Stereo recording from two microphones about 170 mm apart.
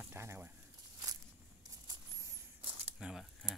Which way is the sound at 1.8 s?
25° right (ahead or behind).